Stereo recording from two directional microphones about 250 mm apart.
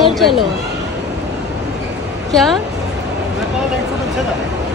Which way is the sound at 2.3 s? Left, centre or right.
Centre.